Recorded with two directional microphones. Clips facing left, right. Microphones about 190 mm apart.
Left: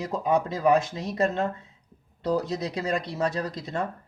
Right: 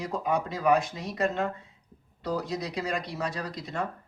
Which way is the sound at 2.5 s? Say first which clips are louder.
Left 3 dB; 25° left (ahead or behind).